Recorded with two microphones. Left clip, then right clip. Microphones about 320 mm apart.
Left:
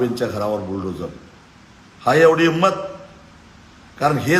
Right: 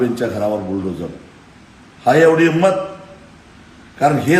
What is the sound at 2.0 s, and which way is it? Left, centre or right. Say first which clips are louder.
Speech: right 2 dB; centre.